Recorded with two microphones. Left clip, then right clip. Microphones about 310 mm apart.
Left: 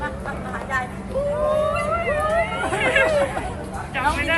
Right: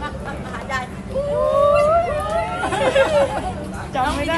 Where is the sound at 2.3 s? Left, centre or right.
Centre.